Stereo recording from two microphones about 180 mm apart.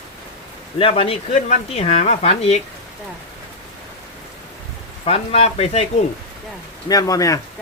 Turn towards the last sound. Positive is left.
turn(degrees=20)  # may be behind; listen again after turning